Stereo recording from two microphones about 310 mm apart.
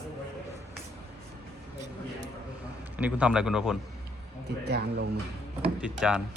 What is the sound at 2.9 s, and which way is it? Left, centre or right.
Speech, centre.